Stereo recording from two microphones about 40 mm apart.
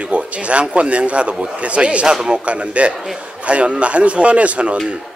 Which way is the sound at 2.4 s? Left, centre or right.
Right.